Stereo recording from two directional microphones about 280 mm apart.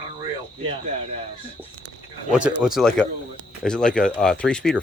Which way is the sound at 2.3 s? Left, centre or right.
Centre.